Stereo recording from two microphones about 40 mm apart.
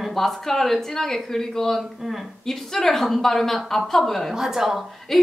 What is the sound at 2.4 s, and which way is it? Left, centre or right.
Speech, centre.